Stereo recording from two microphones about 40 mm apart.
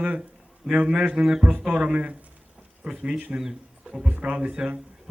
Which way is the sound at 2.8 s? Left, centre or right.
Right.